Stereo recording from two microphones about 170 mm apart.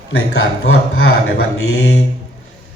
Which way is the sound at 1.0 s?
80° left.